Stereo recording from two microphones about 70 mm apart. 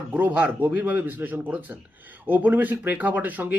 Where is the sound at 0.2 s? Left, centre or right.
Right.